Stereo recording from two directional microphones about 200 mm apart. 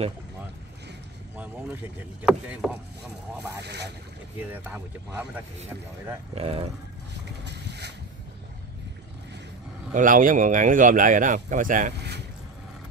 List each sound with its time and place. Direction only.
1.3 s vehicle: 10° right (ahead or behind)
2.2 s speech: 5° right (ahead or behind)
3.6 s speech: 55° right (ahead or behind)
6.3 s speech: 30° right (ahead or behind)
7.4 s boat: 60° right (ahead or behind)
9.9 s speech: 40° right (ahead or behind)